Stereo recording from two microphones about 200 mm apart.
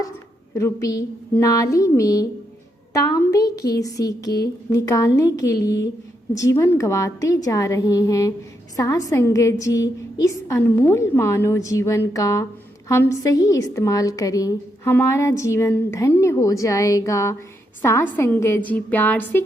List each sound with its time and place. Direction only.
0.5 s a woman's voice: 15° left (ahead or behind)